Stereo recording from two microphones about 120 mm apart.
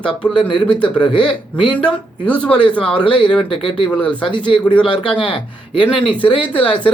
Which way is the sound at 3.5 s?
45° left (ahead or behind).